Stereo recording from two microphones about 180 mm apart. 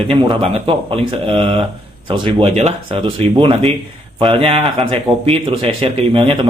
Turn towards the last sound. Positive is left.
turn(degrees=-30)  # may be behind; listen again after turning